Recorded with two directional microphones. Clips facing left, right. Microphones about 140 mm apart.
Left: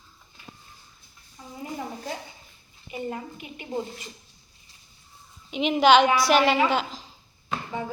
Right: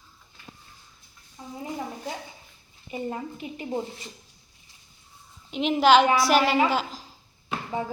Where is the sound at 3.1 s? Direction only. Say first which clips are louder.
Right 2 dB; 30° right (ahead or behind).